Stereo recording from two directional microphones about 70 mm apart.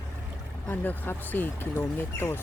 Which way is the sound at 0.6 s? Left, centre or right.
Left.